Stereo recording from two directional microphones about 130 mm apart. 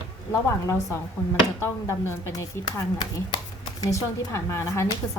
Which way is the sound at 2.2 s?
20° left (ahead or behind).